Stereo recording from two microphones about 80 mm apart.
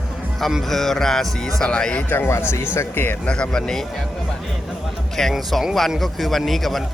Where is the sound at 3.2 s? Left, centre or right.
Centre.